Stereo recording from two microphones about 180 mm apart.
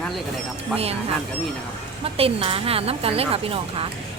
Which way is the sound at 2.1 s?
30° right (ahead or behind).